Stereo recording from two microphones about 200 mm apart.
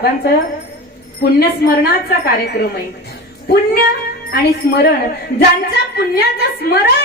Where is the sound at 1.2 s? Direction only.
50° left (ahead or behind).